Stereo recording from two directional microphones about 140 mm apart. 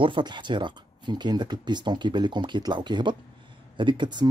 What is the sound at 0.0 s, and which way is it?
Speech, 35° right (ahead or behind).